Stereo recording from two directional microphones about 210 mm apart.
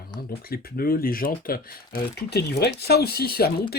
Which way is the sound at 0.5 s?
45° left (ahead or behind).